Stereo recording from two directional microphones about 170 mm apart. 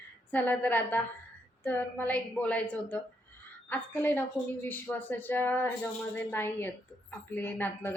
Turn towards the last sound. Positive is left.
turn(degrees=10)  # may be behind; listen again after turning